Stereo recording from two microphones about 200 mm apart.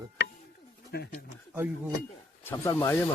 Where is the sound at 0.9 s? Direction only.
50° left (ahead or behind).